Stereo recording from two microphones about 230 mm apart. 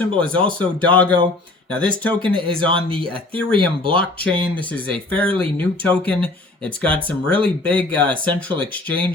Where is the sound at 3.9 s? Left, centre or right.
Centre.